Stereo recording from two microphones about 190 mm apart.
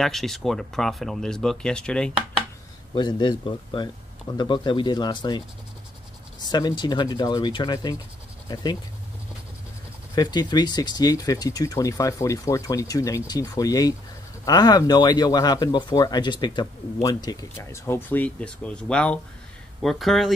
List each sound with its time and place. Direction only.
0.0 s speech: centre (ahead or behind)
2.9 s speech: 25° left (ahead or behind)
6.4 s speech: 20° left (ahead or behind)
10.1 s speech: 20° left (ahead or behind); by 20.3 s centre (ahead or behind)